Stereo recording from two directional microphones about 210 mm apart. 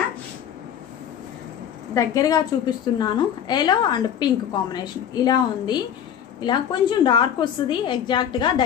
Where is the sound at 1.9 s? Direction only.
15° left (ahead or behind).